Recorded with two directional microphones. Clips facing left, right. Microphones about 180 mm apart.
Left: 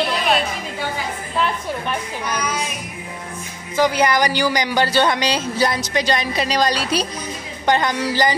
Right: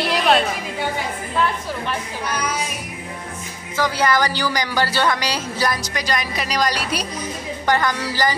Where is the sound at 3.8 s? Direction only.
15° left (ahead or behind).